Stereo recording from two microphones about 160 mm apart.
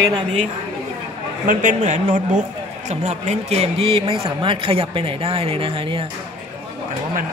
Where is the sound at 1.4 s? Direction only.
50° right (ahead or behind); by 6.0 s 35° right (ahead or behind).